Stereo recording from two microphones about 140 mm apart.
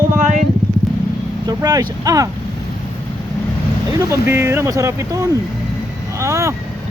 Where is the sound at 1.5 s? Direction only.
25° right (ahead or behind).